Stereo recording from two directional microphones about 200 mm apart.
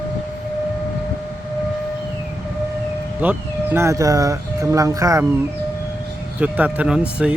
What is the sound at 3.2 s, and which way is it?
Speech, 10° right (ahead or behind).